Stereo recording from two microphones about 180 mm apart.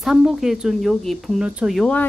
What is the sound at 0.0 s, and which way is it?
Speech, centre (ahead or behind).